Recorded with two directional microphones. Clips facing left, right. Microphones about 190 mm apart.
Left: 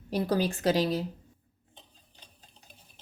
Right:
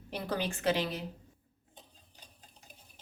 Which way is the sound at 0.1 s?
35° left (ahead or behind).